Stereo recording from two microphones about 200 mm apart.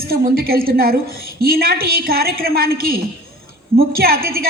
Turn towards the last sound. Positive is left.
turn(degrees=-50)  # may be behind; listen again after turning